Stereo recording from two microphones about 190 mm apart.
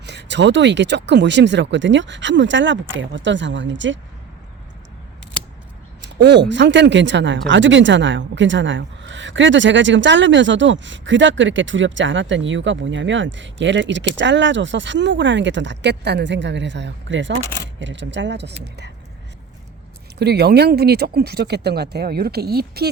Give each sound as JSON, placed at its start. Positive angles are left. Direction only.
{"t": 0.0, "sound": "speech", "side_deg": -65}
{"t": 6.1, "sound": "speech", "side_deg": -65}
{"t": 20.1, "sound": "speech", "side_deg": -60}